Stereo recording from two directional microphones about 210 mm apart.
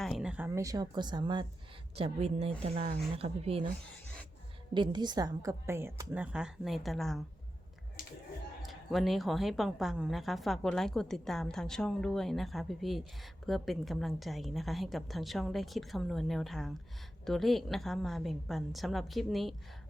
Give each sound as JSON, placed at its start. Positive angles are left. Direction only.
{"t": 0.0, "sound": "speech", "side_deg": 0}
{"t": 3.8, "sound": "a sound", "side_deg": 5}
{"t": 4.7, "sound": "a woman's voice", "side_deg": -20}
{"t": 8.6, "sound": "speech", "side_deg": 0}